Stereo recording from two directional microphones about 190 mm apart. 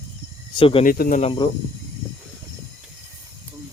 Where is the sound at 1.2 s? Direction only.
30° left (ahead or behind).